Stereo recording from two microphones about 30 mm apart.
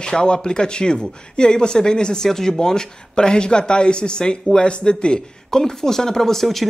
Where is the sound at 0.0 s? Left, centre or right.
Left.